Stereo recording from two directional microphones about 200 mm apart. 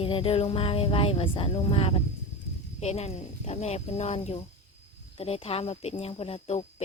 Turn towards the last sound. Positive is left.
turn(degrees=30)  # may be behind; listen again after turning